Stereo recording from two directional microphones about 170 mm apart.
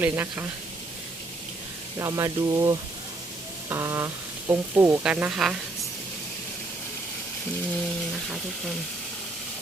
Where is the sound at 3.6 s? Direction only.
15° right (ahead or behind).